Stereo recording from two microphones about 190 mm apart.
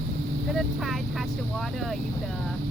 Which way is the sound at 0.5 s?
Centre (ahead or behind).